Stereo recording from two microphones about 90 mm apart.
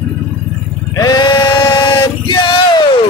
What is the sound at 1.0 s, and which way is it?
Speech, 50° left (ahead or behind).